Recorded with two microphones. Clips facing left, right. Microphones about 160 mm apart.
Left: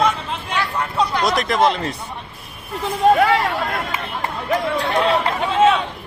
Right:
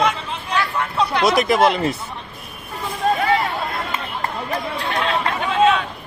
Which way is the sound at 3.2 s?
85° left.